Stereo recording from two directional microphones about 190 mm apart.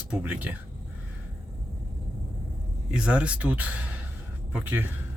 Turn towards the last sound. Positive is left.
turn(degrees=-10)  # may be behind; listen again after turning